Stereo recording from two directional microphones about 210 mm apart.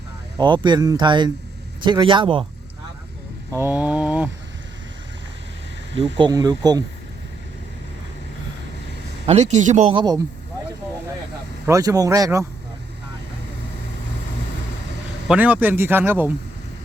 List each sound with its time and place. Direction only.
0.3 s speech: 20° right (ahead or behind)
3.5 s mantra: 10° right (ahead or behind)
6.1 s speech: 20° right (ahead or behind)
9.2 s speech: 30° right (ahead or behind)
11.6 s speech: 15° right (ahead or behind)
15.3 s speech: 10° right (ahead or behind)